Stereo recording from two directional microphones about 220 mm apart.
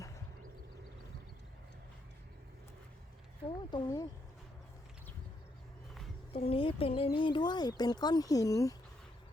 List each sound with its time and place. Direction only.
3.7 s speech: 20° left (ahead or behind)
6.3 s speech: 25° left (ahead or behind)